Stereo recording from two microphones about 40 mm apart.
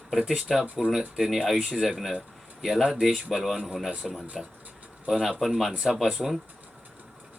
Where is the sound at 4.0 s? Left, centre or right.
Centre.